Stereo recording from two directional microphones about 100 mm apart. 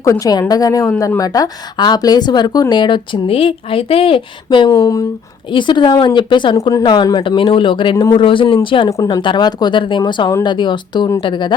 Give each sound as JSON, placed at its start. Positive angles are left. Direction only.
{"t": 0.0, "sound": "a woman's voice", "side_deg": 35}
{"t": 4.4, "sound": "speech", "side_deg": 50}
{"t": 4.7, "sound": "a woman's voice", "side_deg": 35}
{"t": 5.5, "sound": "speech", "side_deg": 50}
{"t": 6.6, "sound": "a woman's voice", "side_deg": 30}
{"t": 6.8, "sound": "a man's voice", "side_deg": 50}